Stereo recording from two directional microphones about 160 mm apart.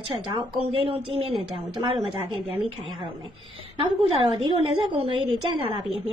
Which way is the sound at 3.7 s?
35° right (ahead or behind).